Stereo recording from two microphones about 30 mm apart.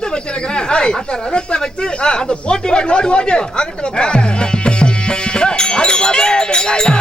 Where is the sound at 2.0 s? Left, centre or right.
Left.